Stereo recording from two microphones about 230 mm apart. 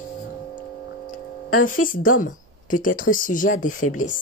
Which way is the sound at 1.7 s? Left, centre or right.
Left.